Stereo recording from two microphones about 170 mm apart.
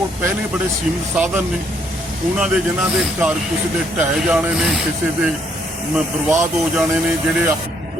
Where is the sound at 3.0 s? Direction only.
5° right (ahead or behind).